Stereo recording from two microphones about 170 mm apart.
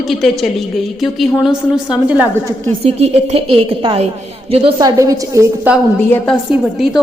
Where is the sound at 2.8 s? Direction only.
35° right (ahead or behind); by 5.7 s 15° right (ahead or behind).